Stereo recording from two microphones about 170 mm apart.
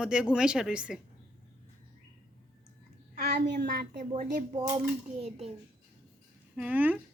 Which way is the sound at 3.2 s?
70° right (ahead or behind).